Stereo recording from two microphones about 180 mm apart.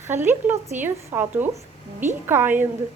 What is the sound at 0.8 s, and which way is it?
A woman's voice, 10° right (ahead or behind).